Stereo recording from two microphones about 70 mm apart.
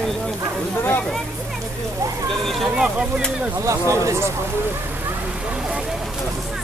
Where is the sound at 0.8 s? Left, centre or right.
Left.